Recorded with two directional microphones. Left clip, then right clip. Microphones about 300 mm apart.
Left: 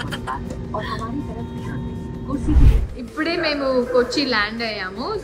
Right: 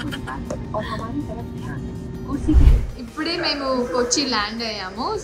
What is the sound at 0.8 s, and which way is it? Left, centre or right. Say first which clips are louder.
Music: left 1 dB; centre.